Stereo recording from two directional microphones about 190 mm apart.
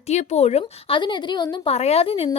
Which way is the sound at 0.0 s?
35° left (ahead or behind).